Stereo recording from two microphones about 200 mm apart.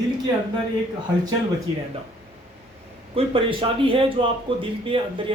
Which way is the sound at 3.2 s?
25° right (ahead or behind).